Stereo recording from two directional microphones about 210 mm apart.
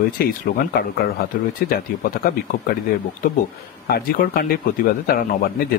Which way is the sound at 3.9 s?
45° left (ahead or behind).